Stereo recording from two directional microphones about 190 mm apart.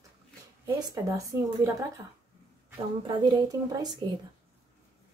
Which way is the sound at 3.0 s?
25° right (ahead or behind).